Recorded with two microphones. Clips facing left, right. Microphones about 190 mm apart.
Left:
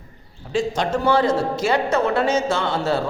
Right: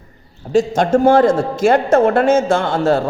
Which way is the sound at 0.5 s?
50° right (ahead or behind).